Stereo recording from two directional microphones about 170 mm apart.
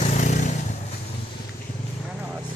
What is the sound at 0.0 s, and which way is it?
Vehicle, 45° left (ahead or behind).